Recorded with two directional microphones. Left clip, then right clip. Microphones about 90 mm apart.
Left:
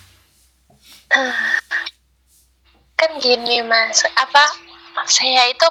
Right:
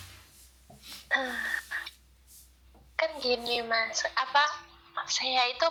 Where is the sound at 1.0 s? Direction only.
45° left (ahead or behind).